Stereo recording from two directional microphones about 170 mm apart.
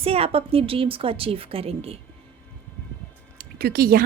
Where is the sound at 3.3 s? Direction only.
60° right (ahead or behind).